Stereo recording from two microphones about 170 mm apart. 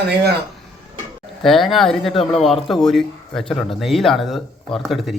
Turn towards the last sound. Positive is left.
turn(degrees=0)  # may be behind; listen again after turning